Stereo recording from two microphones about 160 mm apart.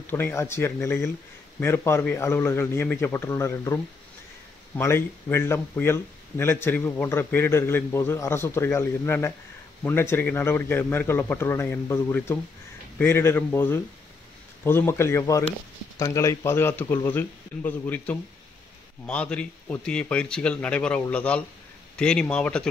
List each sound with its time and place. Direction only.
0.0 s speech: 15° left (ahead or behind)